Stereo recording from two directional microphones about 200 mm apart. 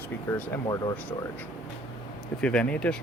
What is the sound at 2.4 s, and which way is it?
Speech, 5° left (ahead or behind).